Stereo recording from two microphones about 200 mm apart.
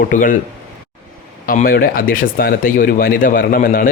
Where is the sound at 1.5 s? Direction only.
45° left (ahead or behind).